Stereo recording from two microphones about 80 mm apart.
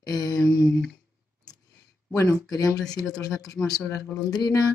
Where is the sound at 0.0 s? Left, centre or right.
Left.